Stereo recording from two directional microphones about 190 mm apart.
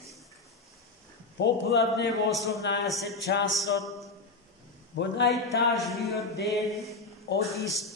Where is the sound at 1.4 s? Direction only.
60° left (ahead or behind).